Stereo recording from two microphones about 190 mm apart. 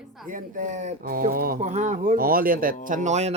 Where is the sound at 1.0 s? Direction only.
50° right (ahead or behind).